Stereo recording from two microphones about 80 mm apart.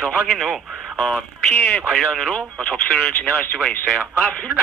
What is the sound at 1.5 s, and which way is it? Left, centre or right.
Speech, left.